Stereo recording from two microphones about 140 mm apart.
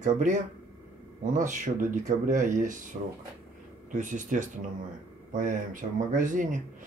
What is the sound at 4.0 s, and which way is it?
Speech, 65° right (ahead or behind).